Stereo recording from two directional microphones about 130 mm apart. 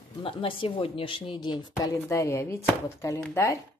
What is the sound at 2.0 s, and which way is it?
A woman's voice, 20° left (ahead or behind).